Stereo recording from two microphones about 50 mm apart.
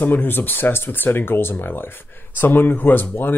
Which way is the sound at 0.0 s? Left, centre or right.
Left.